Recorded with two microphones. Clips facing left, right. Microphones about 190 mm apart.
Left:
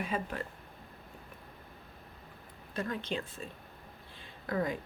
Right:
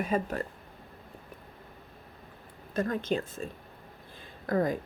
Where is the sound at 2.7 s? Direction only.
45° right (ahead or behind).